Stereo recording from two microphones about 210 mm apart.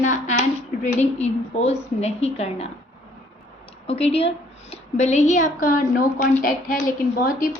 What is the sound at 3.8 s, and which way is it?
A woman's voice, 30° left (ahead or behind).